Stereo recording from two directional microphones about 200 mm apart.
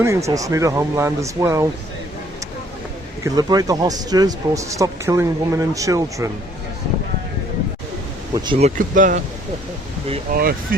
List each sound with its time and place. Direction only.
0.0 s speech: 15° right (ahead or behind)
3.2 s speech: 20° right (ahead or behind)
8.3 s speech: 20° right (ahead or behind)
8.5 s speech: 35° right (ahead or behind)
10.3 s speech: 45° right (ahead or behind)